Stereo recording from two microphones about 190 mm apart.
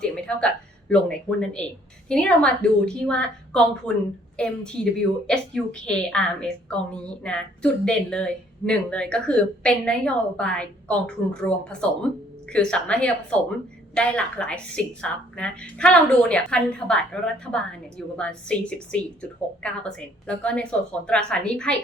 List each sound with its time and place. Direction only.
0.0 s a woman's voice: 5° left (ahead or behind)